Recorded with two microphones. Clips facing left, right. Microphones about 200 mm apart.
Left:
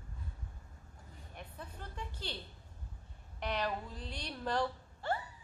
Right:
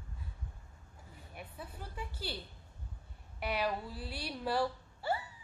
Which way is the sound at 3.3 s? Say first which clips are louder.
Right 2 dB; 10° right (ahead or behind).